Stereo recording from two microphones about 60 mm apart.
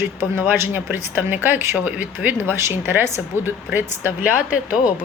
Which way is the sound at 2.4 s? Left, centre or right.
Right.